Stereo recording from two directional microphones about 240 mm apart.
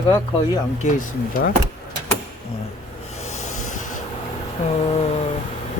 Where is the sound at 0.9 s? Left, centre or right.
Left.